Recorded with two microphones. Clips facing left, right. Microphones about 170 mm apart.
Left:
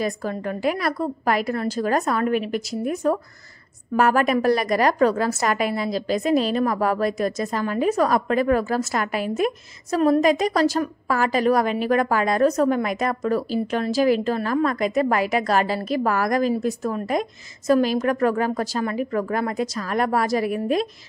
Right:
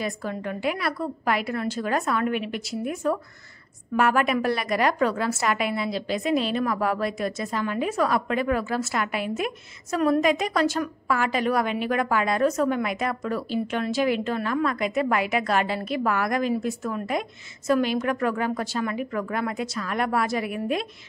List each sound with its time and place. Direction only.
0.0 s a woman's voice: 40° left (ahead or behind)